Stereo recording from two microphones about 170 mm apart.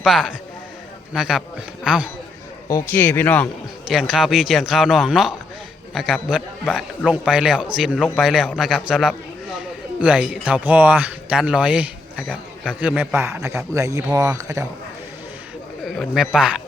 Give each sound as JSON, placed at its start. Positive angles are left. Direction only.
{"t": 0.0, "sound": "a man's voice", "side_deg": -5}
{"t": 2.6, "sound": "speech", "side_deg": 15}
{"t": 3.8, "sound": "a man's voice", "side_deg": -5}
{"t": 15.8, "sound": "a man's voice", "side_deg": 0}